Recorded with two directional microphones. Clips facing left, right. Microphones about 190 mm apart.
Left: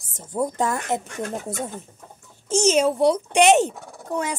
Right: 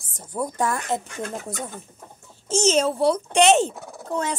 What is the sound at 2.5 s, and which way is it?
Speech, 15° left (ahead or behind).